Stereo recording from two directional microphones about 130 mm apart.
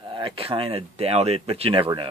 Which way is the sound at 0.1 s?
45° right (ahead or behind).